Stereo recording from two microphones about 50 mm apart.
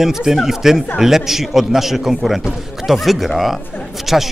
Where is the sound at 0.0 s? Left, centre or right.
Centre.